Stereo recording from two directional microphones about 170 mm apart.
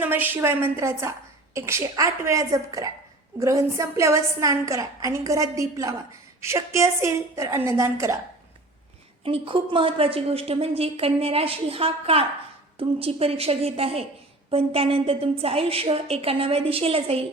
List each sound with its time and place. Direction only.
0.0 s a woman's voice: 10° right (ahead or behind)
9.2 s a woman's voice: 35° right (ahead or behind)